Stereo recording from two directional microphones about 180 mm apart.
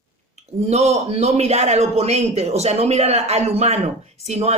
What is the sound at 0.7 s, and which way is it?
A man's voice, 35° right (ahead or behind).